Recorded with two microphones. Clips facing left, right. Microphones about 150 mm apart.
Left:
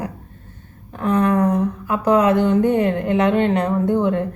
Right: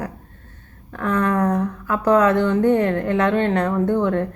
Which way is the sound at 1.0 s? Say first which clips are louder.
Left 3 dB; 20° left (ahead or behind).